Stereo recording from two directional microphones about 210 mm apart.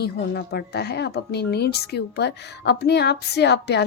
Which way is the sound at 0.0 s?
50° left (ahead or behind).